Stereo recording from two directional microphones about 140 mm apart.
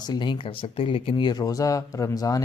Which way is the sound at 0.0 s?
30° left (ahead or behind).